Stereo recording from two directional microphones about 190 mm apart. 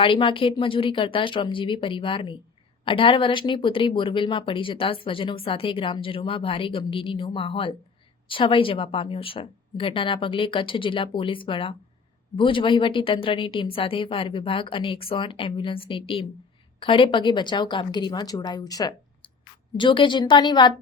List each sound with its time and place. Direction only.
0.0 s speech: 25° left (ahead or behind)